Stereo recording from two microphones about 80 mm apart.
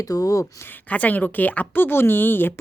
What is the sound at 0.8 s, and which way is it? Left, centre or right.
Speech, centre.